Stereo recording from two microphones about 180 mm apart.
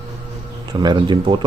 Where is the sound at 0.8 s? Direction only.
25° right (ahead or behind).